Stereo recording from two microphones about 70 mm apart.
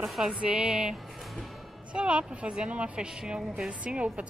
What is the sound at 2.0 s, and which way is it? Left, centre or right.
A woman's voice, centre.